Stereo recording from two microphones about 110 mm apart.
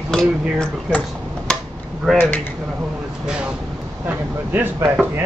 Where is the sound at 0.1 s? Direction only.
5° left (ahead or behind).